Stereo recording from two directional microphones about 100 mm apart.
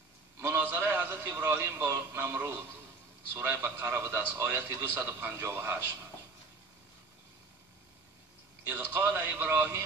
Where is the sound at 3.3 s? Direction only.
25° right (ahead or behind).